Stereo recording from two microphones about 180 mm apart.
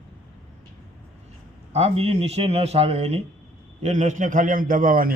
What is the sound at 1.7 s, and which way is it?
A man's voice, 35° right (ahead or behind).